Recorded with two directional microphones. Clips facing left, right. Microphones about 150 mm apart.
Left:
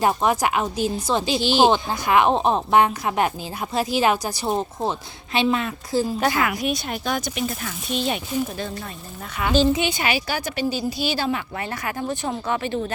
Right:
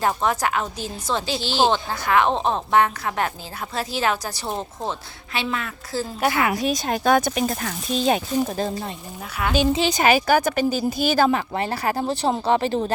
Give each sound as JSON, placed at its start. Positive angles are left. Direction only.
{"t": 0.0, "sound": "a woman's voice", "side_deg": 15}
{"t": 6.3, "sound": "a woman's voice", "side_deg": -30}
{"t": 6.7, "sound": "speech", "side_deg": -45}
{"t": 9.4, "sound": "a woman's voice", "side_deg": -5}
{"t": 9.7, "sound": "a woman's voice", "side_deg": -35}